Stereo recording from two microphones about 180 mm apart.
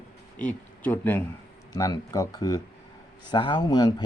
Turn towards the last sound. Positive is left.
turn(degrees=20)  # may be behind; listen again after turning